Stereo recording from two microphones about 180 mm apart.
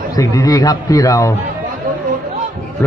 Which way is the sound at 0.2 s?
20° left (ahead or behind).